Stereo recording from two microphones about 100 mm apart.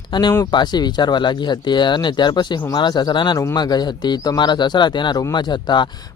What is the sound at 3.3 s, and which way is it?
Speech, 40° left (ahead or behind).